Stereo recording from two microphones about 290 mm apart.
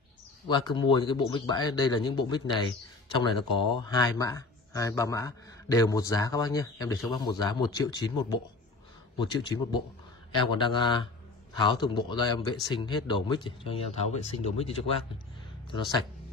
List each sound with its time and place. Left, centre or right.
0.5 s a man's voice: centre